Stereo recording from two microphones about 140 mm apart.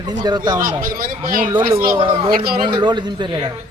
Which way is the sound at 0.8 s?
85° right.